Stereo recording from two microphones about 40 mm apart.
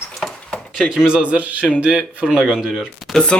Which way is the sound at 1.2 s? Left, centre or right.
Right.